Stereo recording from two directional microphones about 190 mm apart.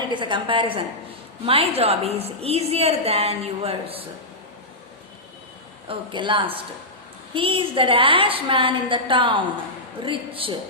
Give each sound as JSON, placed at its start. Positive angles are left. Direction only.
{"t": 0.0, "sound": "a woman's voice", "side_deg": -25}
{"t": 5.9, "sound": "a woman's voice", "side_deg": -25}